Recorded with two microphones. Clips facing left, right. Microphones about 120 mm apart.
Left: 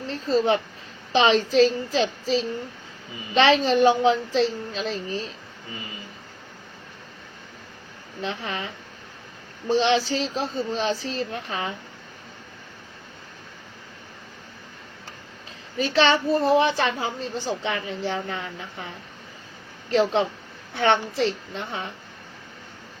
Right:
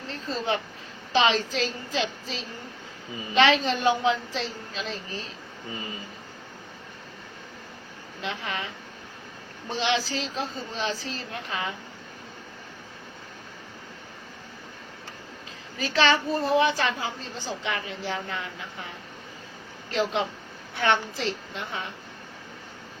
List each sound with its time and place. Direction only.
0.1 s a child's voice: 30° left (ahead or behind)
3.3 s a child's voice: 30° left (ahead or behind)
8.2 s a child's voice: 30° left (ahead or behind)
15.8 s a child's voice: 30° left (ahead or behind)
19.9 s a child's voice: 30° left (ahead or behind)